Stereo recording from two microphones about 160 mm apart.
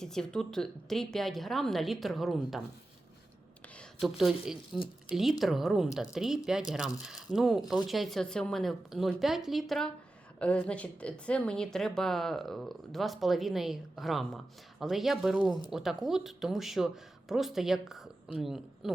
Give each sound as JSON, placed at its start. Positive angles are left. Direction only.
{"t": 0.0, "sound": "a woman's voice", "side_deg": 5}
{"t": 4.0, "sound": "a woman's voice", "side_deg": 0}